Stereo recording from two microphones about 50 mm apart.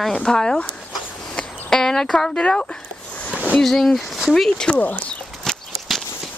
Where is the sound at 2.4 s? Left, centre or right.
Centre.